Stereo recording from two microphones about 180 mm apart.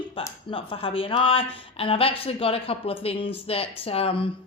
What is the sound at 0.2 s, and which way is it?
A woman's voice, 30° left (ahead or behind).